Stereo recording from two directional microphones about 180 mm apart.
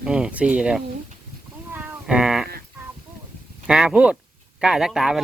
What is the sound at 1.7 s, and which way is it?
Cat, 10° right (ahead or behind).